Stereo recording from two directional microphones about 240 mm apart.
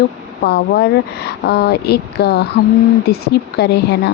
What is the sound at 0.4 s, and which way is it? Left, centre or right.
Speech, left.